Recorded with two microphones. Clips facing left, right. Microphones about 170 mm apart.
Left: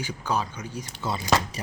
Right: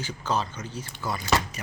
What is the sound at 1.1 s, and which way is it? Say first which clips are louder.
Speech: left 1 dB; 25° left (ahead or behind).